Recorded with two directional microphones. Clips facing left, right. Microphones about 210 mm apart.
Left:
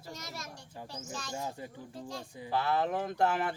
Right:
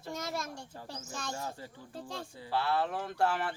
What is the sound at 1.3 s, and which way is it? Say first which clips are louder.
Speech: left 2 dB; 15° left (ahead or behind).